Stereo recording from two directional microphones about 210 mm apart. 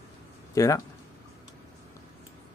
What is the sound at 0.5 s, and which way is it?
Speech, 15° left (ahead or behind).